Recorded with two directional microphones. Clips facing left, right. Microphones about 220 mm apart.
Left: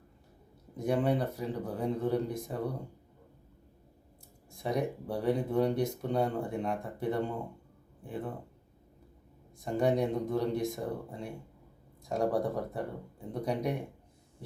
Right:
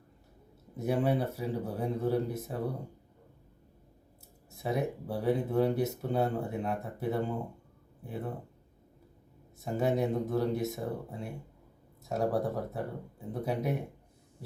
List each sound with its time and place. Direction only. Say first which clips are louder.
0.8 s speech: even; 5° right (ahead or behind)
4.5 s speech: even; 5° right (ahead or behind)
9.6 s speech: left 1 dB; 5° right (ahead or behind)